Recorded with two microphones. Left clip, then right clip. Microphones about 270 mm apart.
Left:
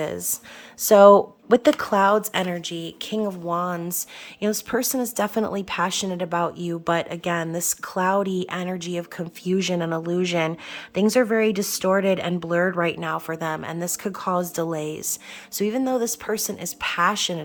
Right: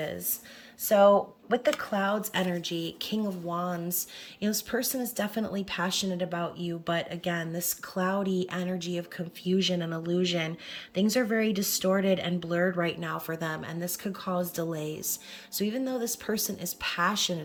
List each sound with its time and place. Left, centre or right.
0.8 s speech: centre